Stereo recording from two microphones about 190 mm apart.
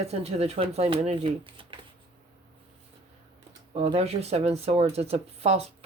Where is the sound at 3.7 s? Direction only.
30° right (ahead or behind).